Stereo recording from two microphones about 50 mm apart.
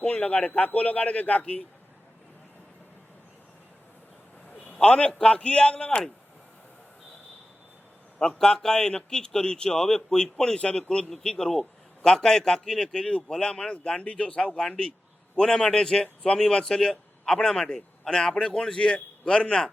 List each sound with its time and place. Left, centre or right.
0.0 s a man's voice: left
4.7 s a man's voice: left
8.2 s a man's voice: centre